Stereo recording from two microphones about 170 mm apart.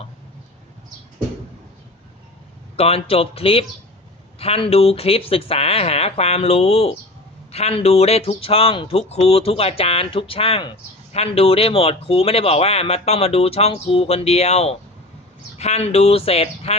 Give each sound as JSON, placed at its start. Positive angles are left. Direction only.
{"t": 2.7, "sound": "speech", "side_deg": 35}